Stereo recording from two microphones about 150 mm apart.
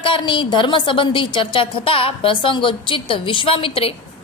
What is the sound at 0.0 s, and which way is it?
A woman's voice, 35° left (ahead or behind).